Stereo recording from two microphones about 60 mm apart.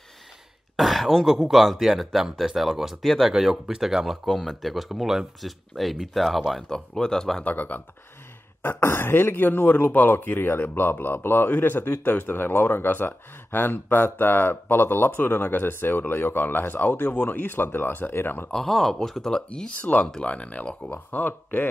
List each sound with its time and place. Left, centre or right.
0.7 s speech: centre
6.7 s speech: centre
7.4 s speech: left
8.6 s speech: left
18.5 s speech: centre
19.7 s speech: left
21.1 s speech: left